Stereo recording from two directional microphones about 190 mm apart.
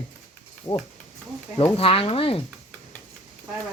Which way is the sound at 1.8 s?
30° left (ahead or behind).